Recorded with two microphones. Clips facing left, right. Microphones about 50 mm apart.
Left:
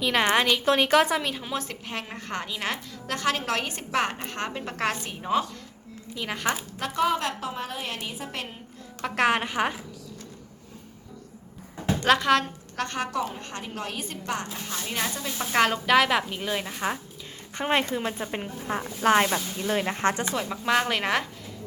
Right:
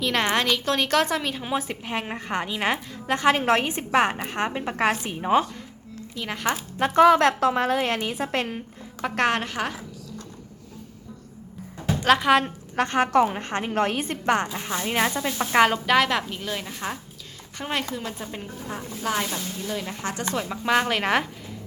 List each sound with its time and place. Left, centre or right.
0.0 s a woman's voice: centre
1.4 s a woman's voice: centre
6.1 s a woman's voice: centre
6.9 s a woman's voice: right
9.0 s a woman's voice: centre
11.9 s a woman's voice: centre
12.7 s a woman's voice: right
14.6 s a woman's voice: right
15.4 s a woman's voice: centre
17.6 s speech: left
20.3 s a woman's voice: centre